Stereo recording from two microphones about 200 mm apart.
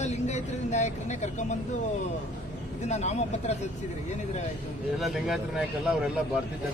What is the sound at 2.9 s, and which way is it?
Speech, 35° left (ahead or behind).